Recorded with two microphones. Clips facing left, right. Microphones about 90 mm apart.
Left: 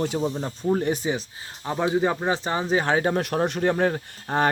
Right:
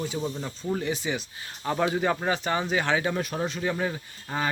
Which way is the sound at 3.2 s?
65° left (ahead or behind).